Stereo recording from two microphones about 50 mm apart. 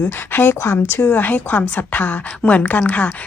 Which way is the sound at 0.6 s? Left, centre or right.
Left.